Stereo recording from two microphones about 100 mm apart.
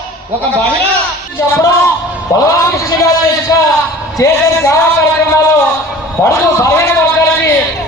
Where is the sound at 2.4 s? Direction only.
30° left (ahead or behind).